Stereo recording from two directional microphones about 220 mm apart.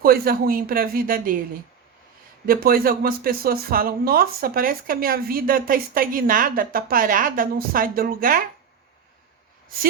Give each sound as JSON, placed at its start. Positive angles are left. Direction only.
{"t": 0.0, "sound": "speech", "side_deg": -45}
{"t": 2.5, "sound": "speech", "side_deg": -40}